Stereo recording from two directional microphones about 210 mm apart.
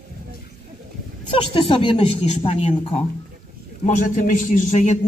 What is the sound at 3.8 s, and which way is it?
A man's voice, 35° left (ahead or behind).